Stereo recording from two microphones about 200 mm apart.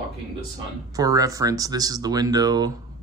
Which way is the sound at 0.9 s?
15° right (ahead or behind).